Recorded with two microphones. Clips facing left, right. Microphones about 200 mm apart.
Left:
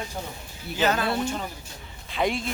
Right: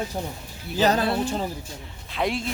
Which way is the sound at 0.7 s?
35° right (ahead or behind).